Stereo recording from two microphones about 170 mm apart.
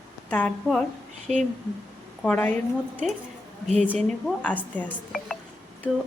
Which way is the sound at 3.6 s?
40° right (ahead or behind).